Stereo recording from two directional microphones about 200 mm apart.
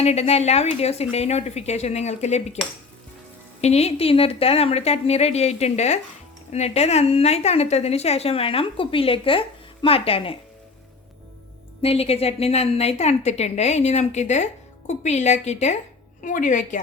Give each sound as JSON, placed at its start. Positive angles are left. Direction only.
{"t": 0.0, "sound": "a woman's voice", "side_deg": 30}
{"t": 3.6, "sound": "a woman's voice", "side_deg": 30}
{"t": 11.8, "sound": "a woman's voice", "side_deg": 30}